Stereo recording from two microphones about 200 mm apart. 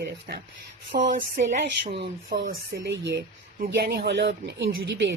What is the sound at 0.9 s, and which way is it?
Speech, 60° right (ahead or behind).